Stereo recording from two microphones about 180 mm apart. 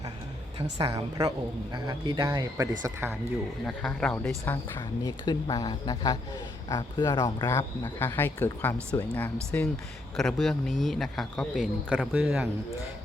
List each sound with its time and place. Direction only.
0.8 s a man's voice: 20° right (ahead or behind)
3.7 s speech: 5° left (ahead or behind)
5.0 s speech: 20° left (ahead or behind); by 12.5 s 5° right (ahead or behind)